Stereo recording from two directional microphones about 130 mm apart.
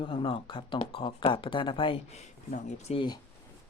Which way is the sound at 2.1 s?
60° left (ahead or behind).